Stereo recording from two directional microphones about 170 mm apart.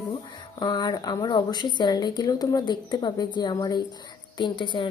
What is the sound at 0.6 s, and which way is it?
A woman's voice, 25° left (ahead or behind).